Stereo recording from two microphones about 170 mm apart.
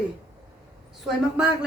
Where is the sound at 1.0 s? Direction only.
5° right (ahead or behind).